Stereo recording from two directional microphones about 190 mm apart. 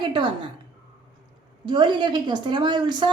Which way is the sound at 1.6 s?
25° right (ahead or behind).